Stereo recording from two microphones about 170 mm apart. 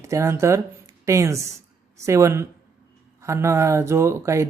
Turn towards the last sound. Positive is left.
turn(degrees=-15)  # may be behind; listen again after turning